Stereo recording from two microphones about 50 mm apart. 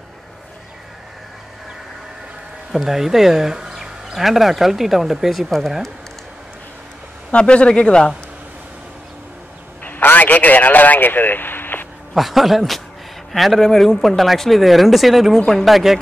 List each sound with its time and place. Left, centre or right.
2.7 s speech: centre
7.2 s speech: left
9.8 s a sound: left
12.1 s speech: centre